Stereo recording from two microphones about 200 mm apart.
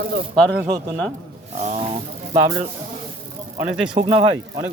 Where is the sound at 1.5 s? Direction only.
35° right (ahead or behind).